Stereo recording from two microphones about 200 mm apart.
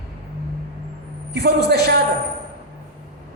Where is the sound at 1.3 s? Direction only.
55° right (ahead or behind).